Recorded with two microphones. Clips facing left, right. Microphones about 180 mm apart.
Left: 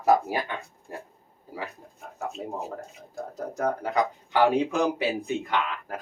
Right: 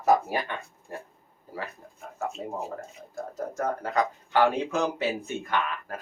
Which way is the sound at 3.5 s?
15° left (ahead or behind).